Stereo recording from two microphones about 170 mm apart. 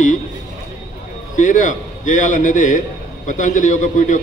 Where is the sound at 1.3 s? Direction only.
50° left (ahead or behind).